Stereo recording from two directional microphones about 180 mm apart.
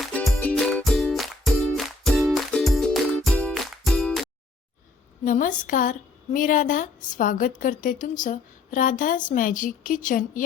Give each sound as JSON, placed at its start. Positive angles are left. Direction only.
{"t": 0.0, "sound": "music", "side_deg": 5}
{"t": 5.2, "sound": "a woman's voice", "side_deg": 50}